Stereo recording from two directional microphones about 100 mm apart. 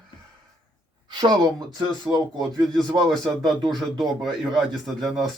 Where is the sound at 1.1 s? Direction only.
45° right (ahead or behind).